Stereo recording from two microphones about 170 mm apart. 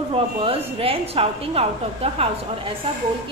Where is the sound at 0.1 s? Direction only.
35° right (ahead or behind).